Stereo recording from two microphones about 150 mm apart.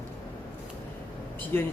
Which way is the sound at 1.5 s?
15° left (ahead or behind).